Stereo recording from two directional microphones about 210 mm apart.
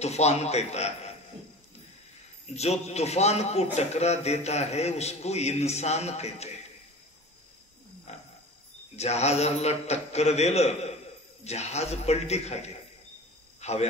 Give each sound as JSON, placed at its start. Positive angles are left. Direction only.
{"t": 0.0, "sound": "a man's voice", "side_deg": 30}
{"t": 2.4, "sound": "a man's voice", "side_deg": 30}
{"t": 8.1, "sound": "wild animals", "side_deg": 30}
{"t": 8.9, "sound": "a man's voice", "side_deg": 30}
{"t": 13.6, "sound": "a sound", "side_deg": 30}